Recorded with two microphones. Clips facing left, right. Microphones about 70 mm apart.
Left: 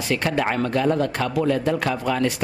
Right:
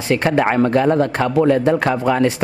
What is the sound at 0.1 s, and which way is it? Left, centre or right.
A man's voice, right.